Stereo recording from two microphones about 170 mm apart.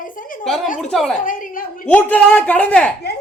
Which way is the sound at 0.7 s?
Centre (ahead or behind).